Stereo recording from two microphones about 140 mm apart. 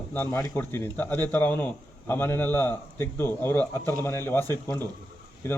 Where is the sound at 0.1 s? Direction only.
15° left (ahead or behind).